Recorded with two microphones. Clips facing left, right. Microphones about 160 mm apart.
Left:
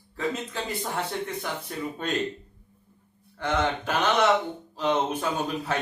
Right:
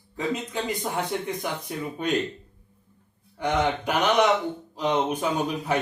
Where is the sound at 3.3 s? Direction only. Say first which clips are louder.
Right 2 dB; 15° right (ahead or behind).